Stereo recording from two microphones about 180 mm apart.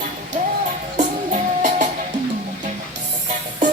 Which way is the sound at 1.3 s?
45° right (ahead or behind).